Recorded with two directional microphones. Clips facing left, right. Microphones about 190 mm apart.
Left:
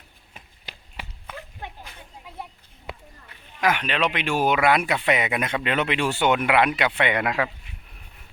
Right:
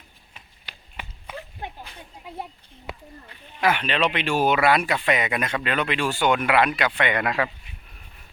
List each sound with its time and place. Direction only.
3.8 s speech: 10° left (ahead or behind)
7.3 s speech: 5° left (ahead or behind)